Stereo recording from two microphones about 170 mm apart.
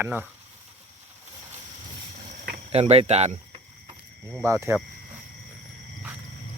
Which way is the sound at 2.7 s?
40° right (ahead or behind).